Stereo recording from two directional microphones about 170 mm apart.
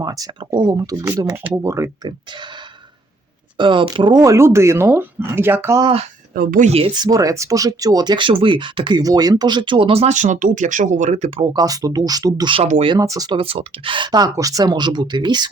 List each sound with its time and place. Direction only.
0.0 s speech: 20° right (ahead or behind)
3.6 s speech: 30° right (ahead or behind)
6.3 s speech: 55° right (ahead or behind)
6.7 s speech: 35° right (ahead or behind)